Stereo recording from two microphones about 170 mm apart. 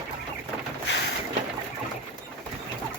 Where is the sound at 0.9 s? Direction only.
90° left.